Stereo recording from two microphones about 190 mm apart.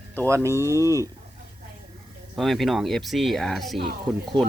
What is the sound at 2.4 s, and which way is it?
Speech, centre (ahead or behind).